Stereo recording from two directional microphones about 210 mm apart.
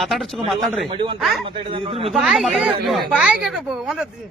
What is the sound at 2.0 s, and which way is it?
A man's voice, centre (ahead or behind).